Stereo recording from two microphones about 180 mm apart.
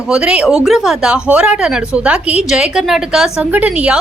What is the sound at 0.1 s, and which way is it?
Speech, 5° right (ahead or behind).